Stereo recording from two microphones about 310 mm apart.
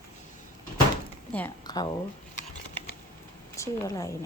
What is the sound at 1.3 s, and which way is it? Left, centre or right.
Speech, centre.